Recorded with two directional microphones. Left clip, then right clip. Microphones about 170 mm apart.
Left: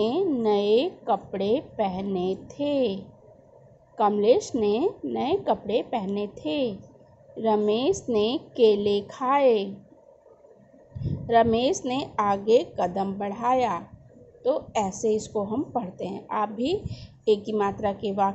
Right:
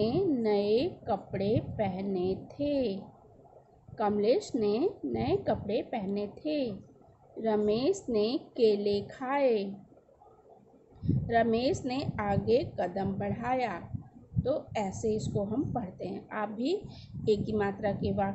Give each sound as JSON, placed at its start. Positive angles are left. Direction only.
{"t": 0.1, "sound": "a woman's voice", "side_deg": 15}
{"t": 11.2, "sound": "a woman's voice", "side_deg": 15}